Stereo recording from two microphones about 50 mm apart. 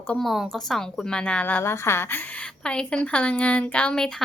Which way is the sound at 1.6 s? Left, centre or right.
Left.